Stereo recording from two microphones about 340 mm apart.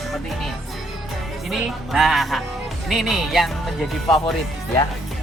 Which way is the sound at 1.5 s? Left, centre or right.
Centre.